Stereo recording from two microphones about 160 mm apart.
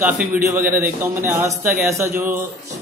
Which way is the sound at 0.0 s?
10° right (ahead or behind).